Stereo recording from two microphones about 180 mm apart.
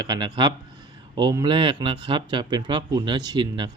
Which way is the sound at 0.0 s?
25° right (ahead or behind).